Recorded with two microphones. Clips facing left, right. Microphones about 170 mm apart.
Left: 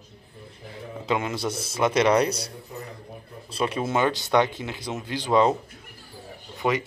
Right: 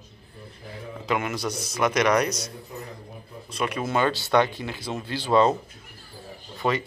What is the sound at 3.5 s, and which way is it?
Speech, 30° left (ahead or behind).